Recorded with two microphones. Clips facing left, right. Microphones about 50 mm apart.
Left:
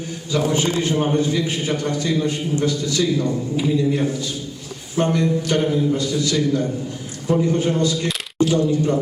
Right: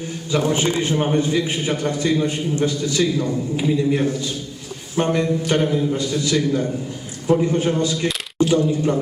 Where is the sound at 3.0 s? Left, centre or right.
Centre.